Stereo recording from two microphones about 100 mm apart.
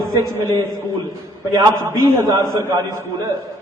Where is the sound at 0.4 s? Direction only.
30° left (ahead or behind).